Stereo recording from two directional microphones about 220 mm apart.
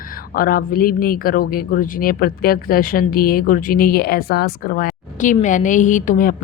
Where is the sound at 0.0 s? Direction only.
40° left (ahead or behind).